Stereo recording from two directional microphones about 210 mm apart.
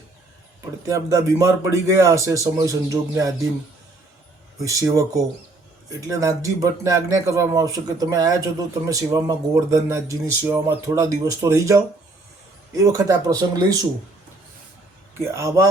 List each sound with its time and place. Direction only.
0.9 s speech: 15° right (ahead or behind)
4.6 s speech: 15° right (ahead or behind)
15.3 s speech: 15° right (ahead or behind)